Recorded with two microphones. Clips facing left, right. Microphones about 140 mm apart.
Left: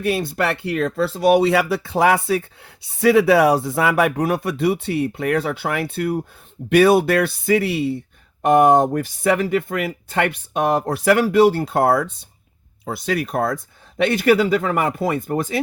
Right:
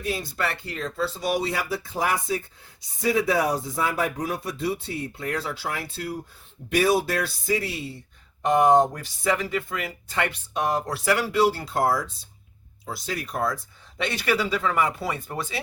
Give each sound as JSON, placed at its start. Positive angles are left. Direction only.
{"t": 0.0, "sound": "speech", "side_deg": 65}